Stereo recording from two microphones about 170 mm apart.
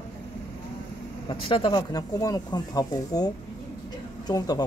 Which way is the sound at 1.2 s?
30° left (ahead or behind).